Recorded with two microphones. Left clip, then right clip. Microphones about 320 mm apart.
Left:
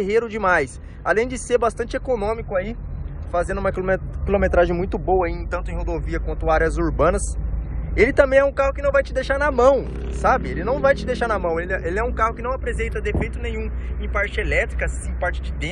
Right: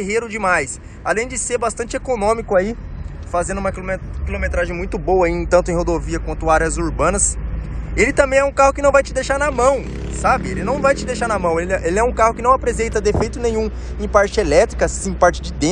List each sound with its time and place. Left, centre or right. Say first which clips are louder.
0.0 s speech: even; centre
13.5 s speech: right 10 dB; right
14.3 s speech: right 8 dB; centre
14.6 s speech: right 9 dB; right